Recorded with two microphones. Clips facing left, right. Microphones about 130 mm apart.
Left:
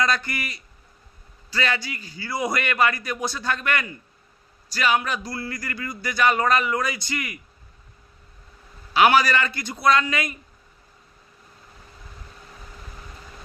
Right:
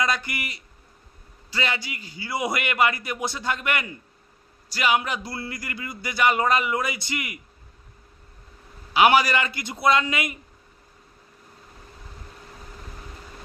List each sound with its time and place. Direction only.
0.0 s speech: 20° right (ahead or behind)
8.9 s speech: 15° right (ahead or behind)